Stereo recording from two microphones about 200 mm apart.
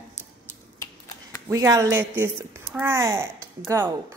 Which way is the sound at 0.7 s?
15° left (ahead or behind).